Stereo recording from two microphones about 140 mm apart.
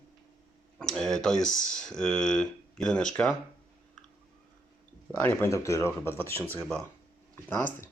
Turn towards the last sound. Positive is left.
turn(degrees=15)  # may be behind; listen again after turning